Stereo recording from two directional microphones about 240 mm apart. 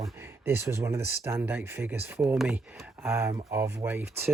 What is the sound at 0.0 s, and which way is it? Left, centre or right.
Speech, centre.